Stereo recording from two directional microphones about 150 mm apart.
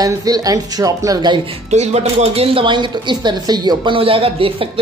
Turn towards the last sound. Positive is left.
turn(degrees=-40)  # may be behind; listen again after turning